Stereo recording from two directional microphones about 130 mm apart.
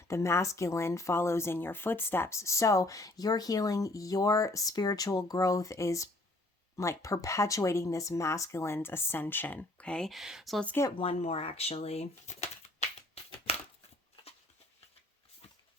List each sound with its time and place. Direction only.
0.1 s speech: 20° left (ahead or behind); by 10.7 s centre (ahead or behind)
10.9 s speech: 50° left (ahead or behind)
13.5 s crumpling: 50° left (ahead or behind)